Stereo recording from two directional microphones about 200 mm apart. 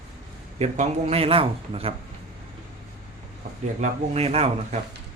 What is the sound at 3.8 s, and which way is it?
Speech, 30° right (ahead or behind).